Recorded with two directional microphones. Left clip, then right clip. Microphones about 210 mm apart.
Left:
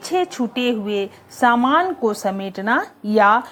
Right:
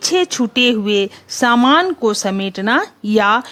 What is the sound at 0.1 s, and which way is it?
Speech, 40° right (ahead or behind).